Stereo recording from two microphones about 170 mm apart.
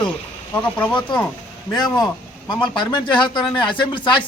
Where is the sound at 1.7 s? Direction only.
25° left (ahead or behind).